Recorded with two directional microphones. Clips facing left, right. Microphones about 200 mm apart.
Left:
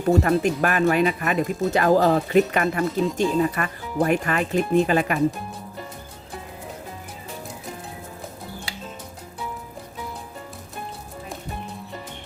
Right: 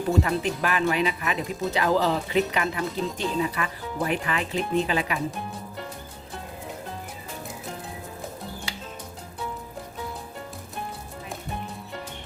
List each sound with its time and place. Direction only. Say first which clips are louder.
0.1 s speech: left 6 dB; 50° left (ahead or behind)